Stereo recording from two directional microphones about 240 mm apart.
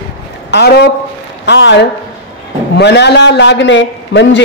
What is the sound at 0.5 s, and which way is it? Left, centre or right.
A man's voice, left.